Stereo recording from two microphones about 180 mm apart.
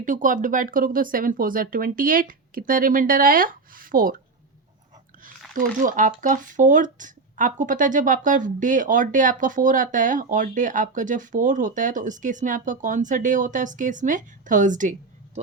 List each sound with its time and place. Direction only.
0.0 s speech: 45° right (ahead or behind)
5.5 s speech: 50° right (ahead or behind)